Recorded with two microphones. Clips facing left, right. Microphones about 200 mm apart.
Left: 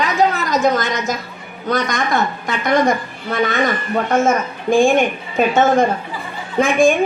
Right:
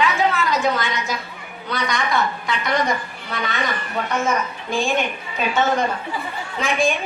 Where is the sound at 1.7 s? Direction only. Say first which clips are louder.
Left 5 dB; 45° left (ahead or behind).